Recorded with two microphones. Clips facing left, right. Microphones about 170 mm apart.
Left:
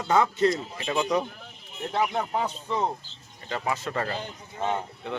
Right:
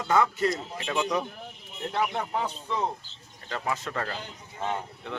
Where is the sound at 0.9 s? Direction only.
5° left (ahead or behind).